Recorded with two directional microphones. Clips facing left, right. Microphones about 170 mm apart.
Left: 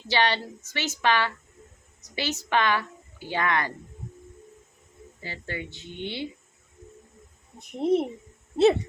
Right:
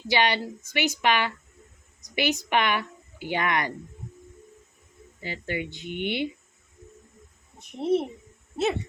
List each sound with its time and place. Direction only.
0.1 s a woman's voice: 15° right (ahead or behind)
5.2 s a woman's voice: 15° right (ahead or behind)
7.8 s speech: 15° left (ahead or behind)